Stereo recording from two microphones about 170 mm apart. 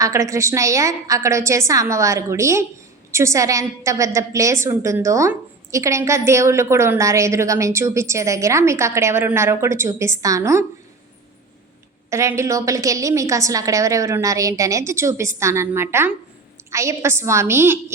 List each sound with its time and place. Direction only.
0.0 s a woman's voice: 20° right (ahead or behind)
12.1 s a woman's voice: 15° right (ahead or behind)